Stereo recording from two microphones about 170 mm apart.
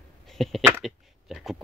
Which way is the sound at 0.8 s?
Centre (ahead or behind).